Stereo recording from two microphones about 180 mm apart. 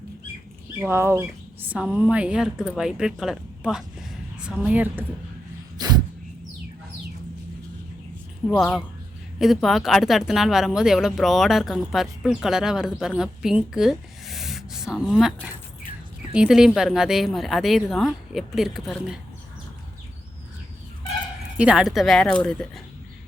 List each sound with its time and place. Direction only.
0.8 s speech: 15° right (ahead or behind)
5.7 s dog: 20° right (ahead or behind)
8.4 s speech: centre (ahead or behind)
21.6 s speech: 5° right (ahead or behind)